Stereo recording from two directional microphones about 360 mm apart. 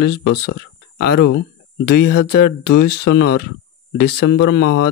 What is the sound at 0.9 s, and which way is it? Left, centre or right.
Speech, left.